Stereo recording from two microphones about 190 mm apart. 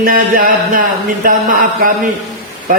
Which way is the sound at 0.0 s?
50° right (ahead or behind).